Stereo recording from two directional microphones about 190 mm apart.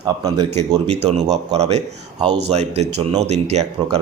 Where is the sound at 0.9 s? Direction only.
35° right (ahead or behind).